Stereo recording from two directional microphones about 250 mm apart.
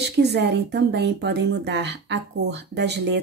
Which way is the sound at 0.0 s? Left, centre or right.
Right.